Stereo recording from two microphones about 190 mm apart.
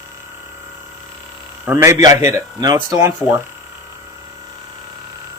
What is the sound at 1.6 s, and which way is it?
Speech, 15° right (ahead or behind).